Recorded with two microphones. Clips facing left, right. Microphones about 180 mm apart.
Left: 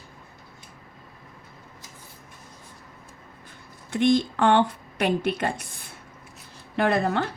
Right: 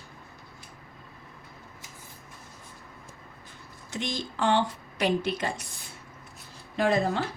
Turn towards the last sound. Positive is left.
turn(degrees=65)  # may be behind; listen again after turning